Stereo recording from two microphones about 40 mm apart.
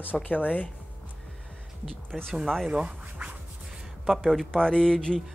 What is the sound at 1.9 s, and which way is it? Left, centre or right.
Speech, centre.